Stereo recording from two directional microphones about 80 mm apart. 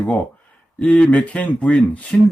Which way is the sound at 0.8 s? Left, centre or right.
Centre.